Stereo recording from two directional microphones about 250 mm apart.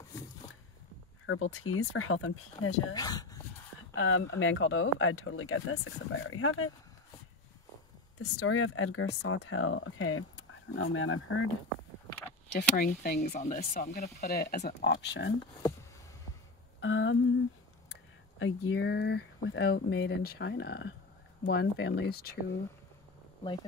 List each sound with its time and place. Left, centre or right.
1.2 s speech: left
2.9 s speech: centre
3.9 s speech: left
8.2 s speech: left
12.5 s speech: left
16.8 s speech: left
18.4 s speech: left